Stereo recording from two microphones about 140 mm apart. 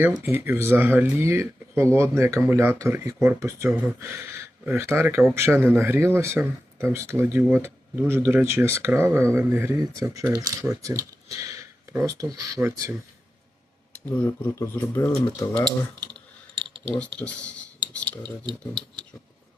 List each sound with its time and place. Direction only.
0.0 s speech: 15° right (ahead or behind)
14.0 s speech: 15° left (ahead or behind)
16.9 s speech: 10° left (ahead or behind)